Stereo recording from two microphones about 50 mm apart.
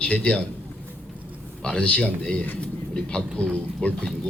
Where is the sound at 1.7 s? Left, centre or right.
Left.